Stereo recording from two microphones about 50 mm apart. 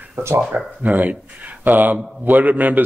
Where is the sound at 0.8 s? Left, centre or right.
Right.